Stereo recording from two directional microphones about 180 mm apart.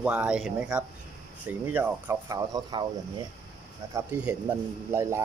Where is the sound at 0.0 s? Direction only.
5° right (ahead or behind).